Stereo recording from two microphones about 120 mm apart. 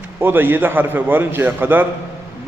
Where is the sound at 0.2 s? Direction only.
20° right (ahead or behind).